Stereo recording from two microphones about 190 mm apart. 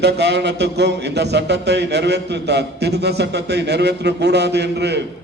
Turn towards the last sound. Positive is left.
turn(degrees=-60)  # may be behind; listen again after turning